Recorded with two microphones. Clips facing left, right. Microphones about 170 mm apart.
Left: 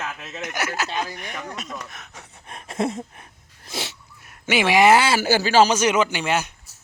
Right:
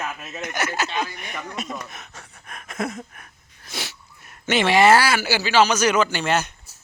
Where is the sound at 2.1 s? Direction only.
25° left (ahead or behind).